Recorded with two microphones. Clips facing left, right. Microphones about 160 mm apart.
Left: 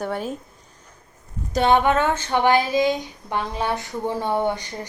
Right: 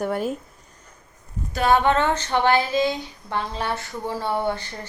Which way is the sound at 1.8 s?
10° left (ahead or behind).